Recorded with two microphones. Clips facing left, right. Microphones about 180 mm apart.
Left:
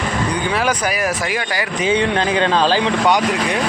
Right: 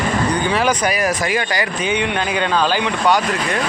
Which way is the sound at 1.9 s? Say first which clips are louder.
Left 5 dB; 30° left (ahead or behind).